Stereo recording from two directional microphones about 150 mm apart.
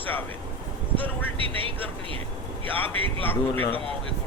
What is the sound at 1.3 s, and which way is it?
Speech, 35° right (ahead or behind).